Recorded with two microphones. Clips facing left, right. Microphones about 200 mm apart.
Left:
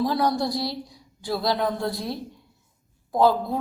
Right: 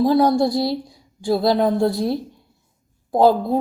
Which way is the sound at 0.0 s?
25° right (ahead or behind).